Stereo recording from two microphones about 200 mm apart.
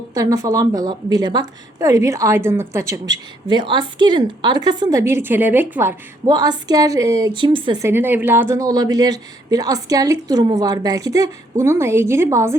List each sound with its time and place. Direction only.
0.1 s a woman's voice: 15° right (ahead or behind)
6.2 s a woman's voice: 20° right (ahead or behind)